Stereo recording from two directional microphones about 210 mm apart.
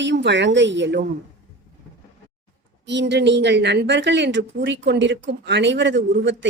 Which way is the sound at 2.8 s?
55° right (ahead or behind).